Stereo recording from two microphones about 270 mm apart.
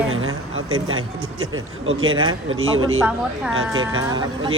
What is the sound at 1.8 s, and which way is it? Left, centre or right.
A woman's voice, right.